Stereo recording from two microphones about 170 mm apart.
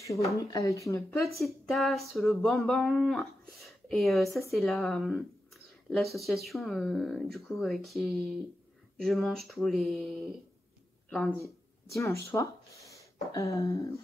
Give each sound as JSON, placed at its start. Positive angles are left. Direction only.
{"t": 0.0, "sound": "speech", "side_deg": 20}
{"t": 1.4, "sound": "speech", "side_deg": 0}
{"t": 12.0, "sound": "speech", "side_deg": 15}